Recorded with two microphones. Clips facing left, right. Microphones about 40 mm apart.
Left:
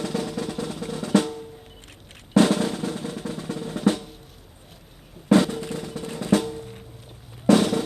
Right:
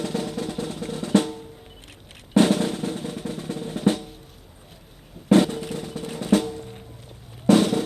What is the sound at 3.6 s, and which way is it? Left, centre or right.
Drum, right.